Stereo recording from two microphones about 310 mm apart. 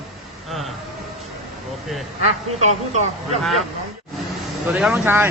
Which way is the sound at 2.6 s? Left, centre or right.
Right.